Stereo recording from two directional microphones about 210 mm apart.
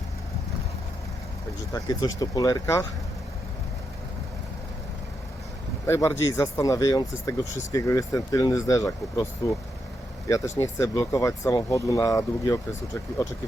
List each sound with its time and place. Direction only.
1.7 s speech: 15° left (ahead or behind)
5.8 s speech: 10° left (ahead or behind)